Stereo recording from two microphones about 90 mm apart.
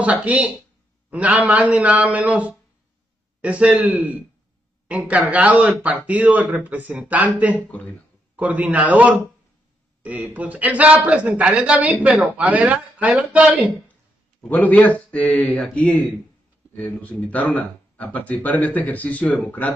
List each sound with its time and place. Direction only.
0.0 s a woman's voice: 15° right (ahead or behind)
7.6 s speech: 15° left (ahead or behind)
8.4 s speech: 15° right (ahead or behind)
14.5 s speech: 20° left (ahead or behind)